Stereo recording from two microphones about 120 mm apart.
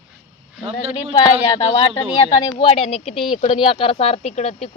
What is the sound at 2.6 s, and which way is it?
Speech, 55° left (ahead or behind).